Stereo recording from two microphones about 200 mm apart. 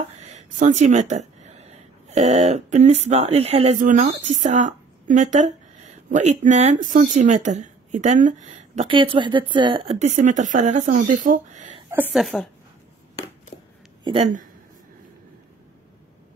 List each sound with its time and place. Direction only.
0.2 s speech: 35° right (ahead or behind)
11.9 s a woman's voice: 5° right (ahead or behind)